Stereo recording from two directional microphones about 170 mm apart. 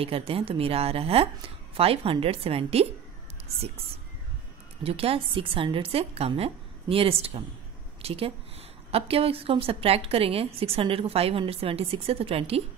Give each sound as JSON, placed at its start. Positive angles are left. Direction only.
{"t": 0.0, "sound": "a woman's voice", "side_deg": -35}